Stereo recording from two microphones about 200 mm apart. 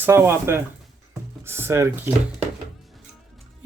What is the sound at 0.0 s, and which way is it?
Speech, 10° right (ahead or behind).